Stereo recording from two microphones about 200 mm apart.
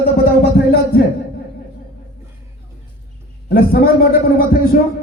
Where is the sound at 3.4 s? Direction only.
50° left (ahead or behind).